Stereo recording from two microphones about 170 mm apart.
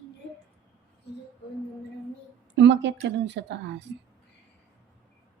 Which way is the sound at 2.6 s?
90° right.